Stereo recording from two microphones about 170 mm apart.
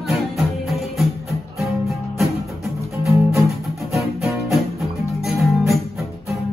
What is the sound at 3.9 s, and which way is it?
Music, centre (ahead or behind).